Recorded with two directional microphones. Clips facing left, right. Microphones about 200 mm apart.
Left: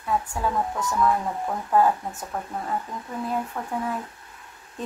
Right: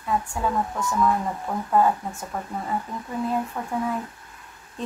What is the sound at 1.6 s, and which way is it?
Speech, centre (ahead or behind).